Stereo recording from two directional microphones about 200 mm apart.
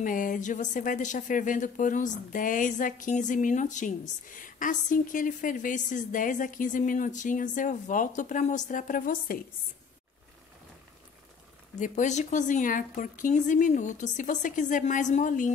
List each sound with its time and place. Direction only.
0.0 s speech: 40° left (ahead or behind)
11.8 s speech: 40° left (ahead or behind)